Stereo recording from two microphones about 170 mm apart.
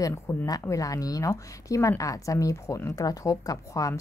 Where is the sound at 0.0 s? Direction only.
15° left (ahead or behind).